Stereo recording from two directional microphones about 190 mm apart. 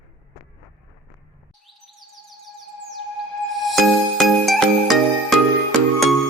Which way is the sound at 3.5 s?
Centre (ahead or behind).